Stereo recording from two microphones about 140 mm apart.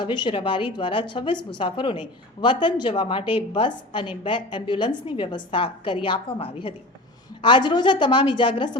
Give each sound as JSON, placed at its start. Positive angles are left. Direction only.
{"t": 0.0, "sound": "a woman's voice", "side_deg": 35}